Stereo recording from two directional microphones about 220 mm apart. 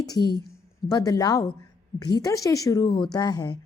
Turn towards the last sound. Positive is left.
turn(degrees=20)  # may be behind; listen again after turning